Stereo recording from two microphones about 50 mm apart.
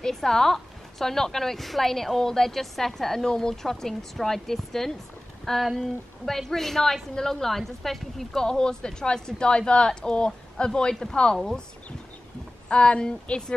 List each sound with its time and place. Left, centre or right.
0.0 s a woman's voice: centre
12.6 s speech: left